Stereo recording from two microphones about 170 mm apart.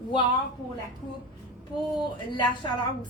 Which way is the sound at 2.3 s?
30° left (ahead or behind).